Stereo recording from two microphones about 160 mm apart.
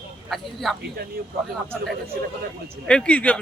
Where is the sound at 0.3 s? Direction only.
Centre (ahead or behind).